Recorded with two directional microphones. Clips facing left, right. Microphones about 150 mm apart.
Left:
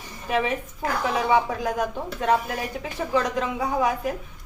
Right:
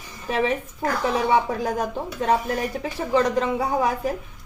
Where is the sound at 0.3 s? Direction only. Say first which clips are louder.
Right 1 dB; 30° right (ahead or behind).